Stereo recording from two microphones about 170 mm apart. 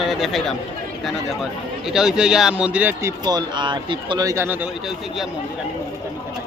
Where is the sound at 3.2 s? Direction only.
25° right (ahead or behind); by 5.3 s centre (ahead or behind).